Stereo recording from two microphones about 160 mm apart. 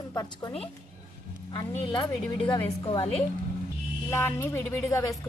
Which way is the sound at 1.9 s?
30° left (ahead or behind).